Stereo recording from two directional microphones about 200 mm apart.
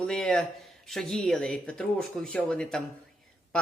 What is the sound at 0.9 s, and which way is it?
Speech, centre (ahead or behind).